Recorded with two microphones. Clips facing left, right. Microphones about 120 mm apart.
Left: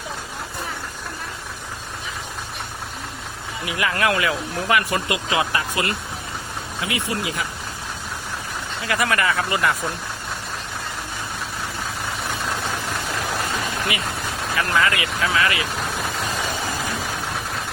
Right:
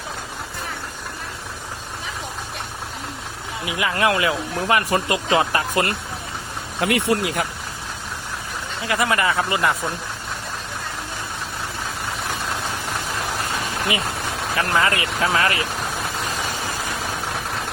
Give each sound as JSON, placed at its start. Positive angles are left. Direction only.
{"t": 3.7, "sound": "speech", "side_deg": -20}
{"t": 6.7, "sound": "speech", "side_deg": -60}
{"t": 8.9, "sound": "speech", "side_deg": -25}
{"t": 14.5, "sound": "speech", "side_deg": -35}